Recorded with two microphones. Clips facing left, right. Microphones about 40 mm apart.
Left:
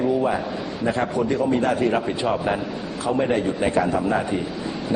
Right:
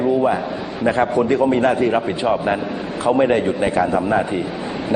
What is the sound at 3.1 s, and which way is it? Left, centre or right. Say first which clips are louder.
Speech: right 6 dB; right.